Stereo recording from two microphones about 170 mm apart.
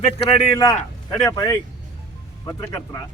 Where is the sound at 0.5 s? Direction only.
20° left (ahead or behind).